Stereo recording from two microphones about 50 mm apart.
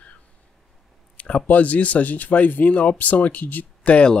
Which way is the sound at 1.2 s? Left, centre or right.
Left.